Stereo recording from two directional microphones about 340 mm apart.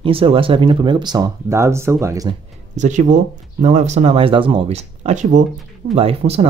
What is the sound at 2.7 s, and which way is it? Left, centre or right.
Speech, right.